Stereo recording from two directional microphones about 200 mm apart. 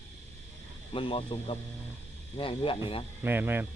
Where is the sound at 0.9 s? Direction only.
25° left (ahead or behind).